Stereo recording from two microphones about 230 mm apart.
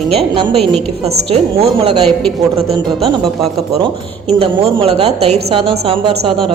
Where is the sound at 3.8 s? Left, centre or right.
Right.